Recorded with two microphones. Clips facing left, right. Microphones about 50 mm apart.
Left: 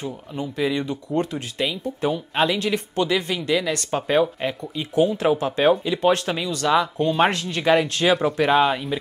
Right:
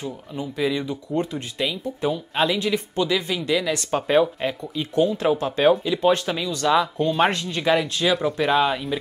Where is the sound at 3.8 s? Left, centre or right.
Centre.